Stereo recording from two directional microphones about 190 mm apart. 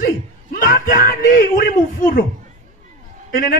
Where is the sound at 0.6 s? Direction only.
45° left (ahead or behind).